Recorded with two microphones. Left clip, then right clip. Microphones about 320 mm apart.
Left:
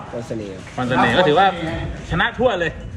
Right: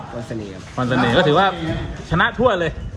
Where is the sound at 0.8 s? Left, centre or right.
Centre.